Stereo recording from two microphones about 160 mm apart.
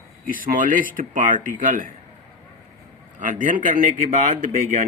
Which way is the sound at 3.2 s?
55° right (ahead or behind).